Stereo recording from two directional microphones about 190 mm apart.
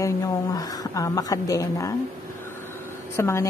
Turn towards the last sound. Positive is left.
turn(degrees=15)  # may be behind; listen again after turning